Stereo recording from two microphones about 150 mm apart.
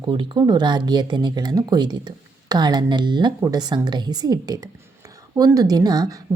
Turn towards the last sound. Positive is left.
turn(degrees=-25)  # may be behind; listen again after turning